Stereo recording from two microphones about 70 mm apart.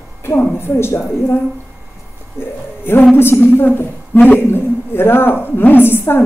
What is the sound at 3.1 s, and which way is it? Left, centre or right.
A woman's voice, left.